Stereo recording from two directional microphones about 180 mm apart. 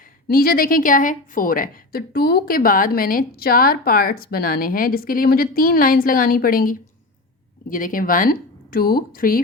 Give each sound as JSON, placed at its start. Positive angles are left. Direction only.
{"t": 0.0, "sound": "a woman's voice", "side_deg": 55}